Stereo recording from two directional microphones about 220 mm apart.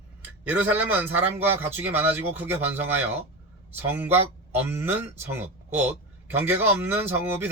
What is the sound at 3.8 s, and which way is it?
Speech, 10° right (ahead or behind).